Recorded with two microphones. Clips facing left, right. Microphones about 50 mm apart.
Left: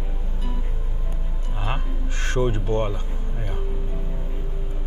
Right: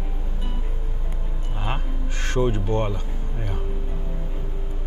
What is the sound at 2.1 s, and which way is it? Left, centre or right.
Speech, left.